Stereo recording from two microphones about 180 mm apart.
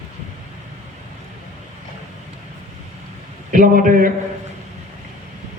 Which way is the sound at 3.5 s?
45° right (ahead or behind).